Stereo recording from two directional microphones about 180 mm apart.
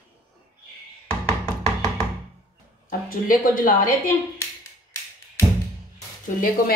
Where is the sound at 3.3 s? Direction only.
50° left (ahead or behind).